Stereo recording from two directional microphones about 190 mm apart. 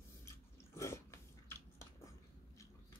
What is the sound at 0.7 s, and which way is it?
Throat clearing, 15° left (ahead or behind).